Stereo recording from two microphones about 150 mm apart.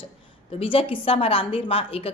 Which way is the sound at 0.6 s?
35° left (ahead or behind).